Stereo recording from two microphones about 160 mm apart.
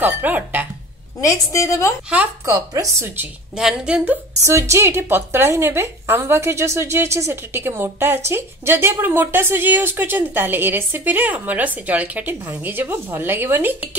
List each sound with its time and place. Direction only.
0.0 s speech: 10° right (ahead or behind)
1.2 s a woman's voice: 20° left (ahead or behind)
2.4 s speech: 20° right (ahead or behind)
3.5 s a woman's voice: 5° right (ahead or behind)